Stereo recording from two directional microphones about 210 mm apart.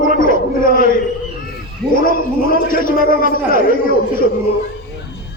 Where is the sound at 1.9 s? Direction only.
40° left (ahead or behind).